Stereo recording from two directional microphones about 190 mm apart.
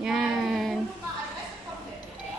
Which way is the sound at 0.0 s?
5° right (ahead or behind).